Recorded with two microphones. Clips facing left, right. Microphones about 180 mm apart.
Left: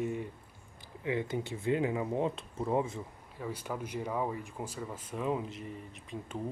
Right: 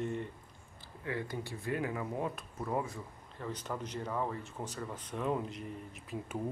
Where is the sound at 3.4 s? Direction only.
10° left (ahead or behind).